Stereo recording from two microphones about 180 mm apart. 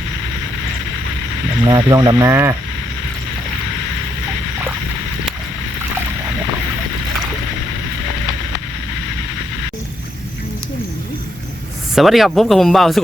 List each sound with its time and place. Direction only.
1.6 s speech: 20° right (ahead or behind)
11.9 s speech: centre (ahead or behind)